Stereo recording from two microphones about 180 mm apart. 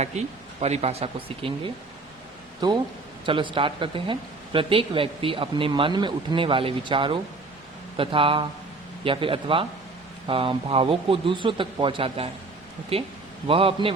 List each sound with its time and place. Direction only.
0.0 s speech: 40° right (ahead or behind)
13.5 s speech: 30° right (ahead or behind)